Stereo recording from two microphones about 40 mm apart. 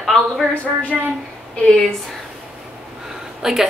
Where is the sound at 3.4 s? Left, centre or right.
Centre.